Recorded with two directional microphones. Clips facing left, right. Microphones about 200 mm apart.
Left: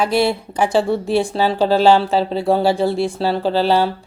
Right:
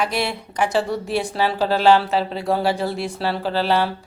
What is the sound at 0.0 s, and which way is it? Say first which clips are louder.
Speech: left 7 dB; 30° left (ahead or behind).